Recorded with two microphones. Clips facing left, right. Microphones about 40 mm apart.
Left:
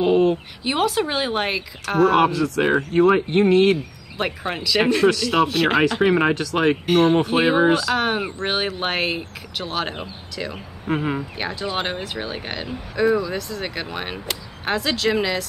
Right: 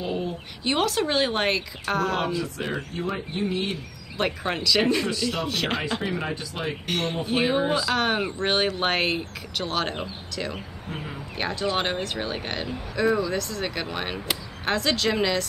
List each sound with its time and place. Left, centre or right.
0.0 s a sound: left
0.7 s speech: centre
2.1 s speech: left
4.2 s speech: centre
5.0 s speech: left
5.5 s speech: centre
5.8 s speech: left
6.9 s speech: centre
7.6 s speech: left
7.9 s speech: centre
10.9 s speech: left
11.3 s speech: centre